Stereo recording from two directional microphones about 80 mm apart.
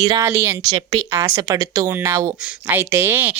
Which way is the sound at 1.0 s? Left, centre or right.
Right.